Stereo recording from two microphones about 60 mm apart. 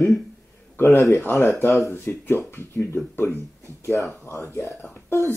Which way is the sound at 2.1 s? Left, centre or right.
Left.